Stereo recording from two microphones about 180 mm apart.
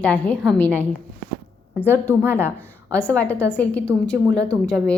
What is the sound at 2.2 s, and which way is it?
Speech, 10° right (ahead or behind).